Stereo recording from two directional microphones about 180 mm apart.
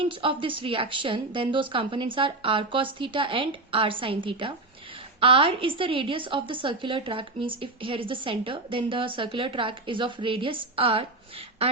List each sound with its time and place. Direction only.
0.0 s a woman's voice: 30° right (ahead or behind)